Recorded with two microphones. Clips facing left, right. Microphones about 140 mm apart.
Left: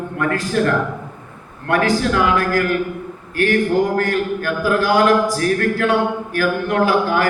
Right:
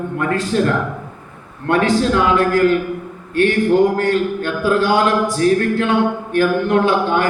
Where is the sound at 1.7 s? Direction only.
25° right (ahead or behind).